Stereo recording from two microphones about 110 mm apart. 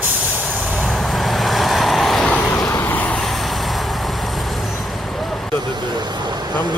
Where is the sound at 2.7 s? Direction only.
20° left (ahead or behind).